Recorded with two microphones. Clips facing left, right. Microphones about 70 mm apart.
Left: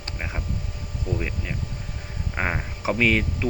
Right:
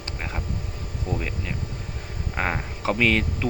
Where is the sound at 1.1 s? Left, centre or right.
Right.